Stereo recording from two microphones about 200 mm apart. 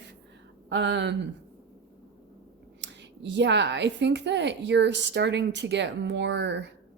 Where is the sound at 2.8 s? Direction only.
60° right (ahead or behind).